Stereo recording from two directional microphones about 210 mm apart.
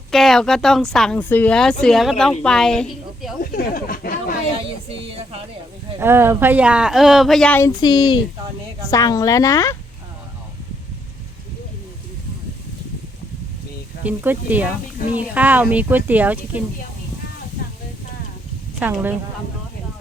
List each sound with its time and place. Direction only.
0.1 s speech: centre (ahead or behind)
3.4 s speech: 45° left (ahead or behind)
6.0 s speech: 10° right (ahead or behind); by 7.7 s 5° left (ahead or behind)
7.8 s speech: 20° left (ahead or behind)
14.0 s speech: 10° right (ahead or behind)
18.8 s speech: 10° right (ahead or behind)